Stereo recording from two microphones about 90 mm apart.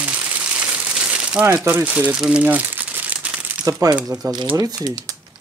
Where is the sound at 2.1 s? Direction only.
5° right (ahead or behind).